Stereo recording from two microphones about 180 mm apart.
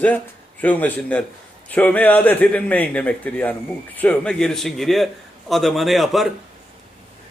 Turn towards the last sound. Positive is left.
turn(degrees=0)  # may be behind; listen again after turning